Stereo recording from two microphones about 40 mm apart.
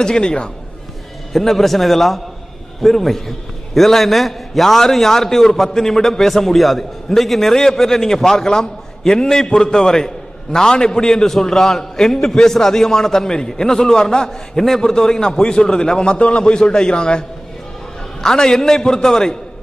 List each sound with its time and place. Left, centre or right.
0.0 s a man's voice: left
1.3 s a man's voice: centre; by 17.2 s left
18.2 s a man's voice: centre